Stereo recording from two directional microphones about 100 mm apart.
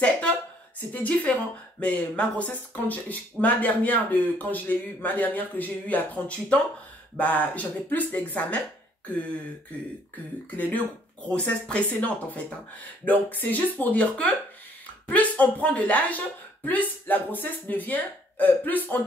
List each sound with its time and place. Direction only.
0.9 s speech: 15° left (ahead or behind)
10.6 s speech: 15° left (ahead or behind)